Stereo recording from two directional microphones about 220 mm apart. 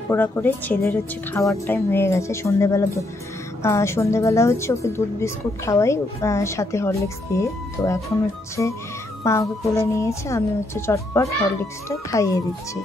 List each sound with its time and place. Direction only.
0.1 s a woman's voice: 10° left (ahead or behind)